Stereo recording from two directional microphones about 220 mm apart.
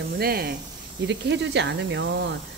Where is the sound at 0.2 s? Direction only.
45° right (ahead or behind).